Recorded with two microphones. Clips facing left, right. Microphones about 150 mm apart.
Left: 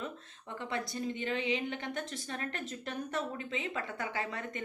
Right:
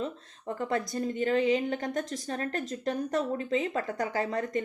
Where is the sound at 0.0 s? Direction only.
40° right (ahead or behind).